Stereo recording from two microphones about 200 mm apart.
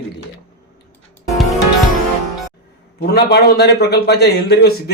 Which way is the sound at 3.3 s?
55° left (ahead or behind).